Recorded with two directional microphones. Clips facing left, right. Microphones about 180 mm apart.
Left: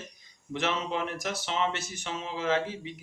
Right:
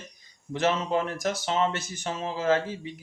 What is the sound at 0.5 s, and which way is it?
Speech, 40° right (ahead or behind).